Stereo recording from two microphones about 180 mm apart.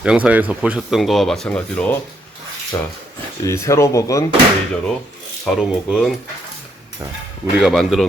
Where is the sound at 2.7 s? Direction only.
20° left (ahead or behind).